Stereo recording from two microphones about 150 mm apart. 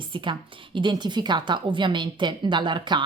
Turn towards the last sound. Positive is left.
turn(degrees=-30)  # may be behind; listen again after turning